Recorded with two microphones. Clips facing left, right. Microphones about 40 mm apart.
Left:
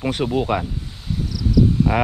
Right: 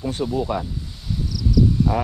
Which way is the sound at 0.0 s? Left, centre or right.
Left.